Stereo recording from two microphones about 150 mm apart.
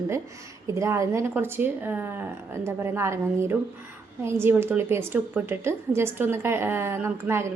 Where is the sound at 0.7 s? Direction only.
20° right (ahead or behind).